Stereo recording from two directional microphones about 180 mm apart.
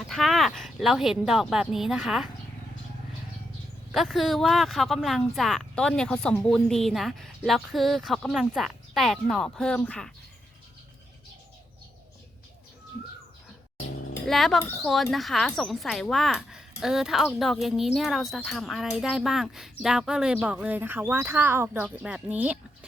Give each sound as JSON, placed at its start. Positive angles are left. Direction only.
{"t": 0.1, "sound": "speech", "side_deg": 0}
{"t": 3.9, "sound": "speech", "side_deg": 0}
{"t": 14.3, "sound": "speech", "side_deg": 0}
{"t": 14.6, "sound": "speech", "side_deg": 10}
{"t": 14.8, "sound": "speech", "side_deg": 0}